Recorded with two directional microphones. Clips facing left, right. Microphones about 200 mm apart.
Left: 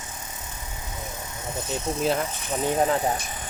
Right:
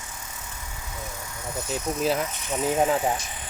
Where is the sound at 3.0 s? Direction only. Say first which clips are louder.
Even; 45° left (ahead or behind).